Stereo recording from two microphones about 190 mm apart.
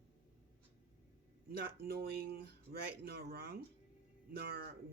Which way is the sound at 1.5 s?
55° right (ahead or behind).